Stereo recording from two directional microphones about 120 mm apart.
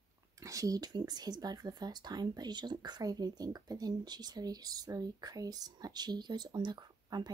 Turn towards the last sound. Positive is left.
turn(degrees=-35)  # may be behind; listen again after turning